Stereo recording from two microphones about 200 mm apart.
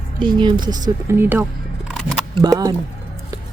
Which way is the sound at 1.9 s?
Centre (ahead or behind).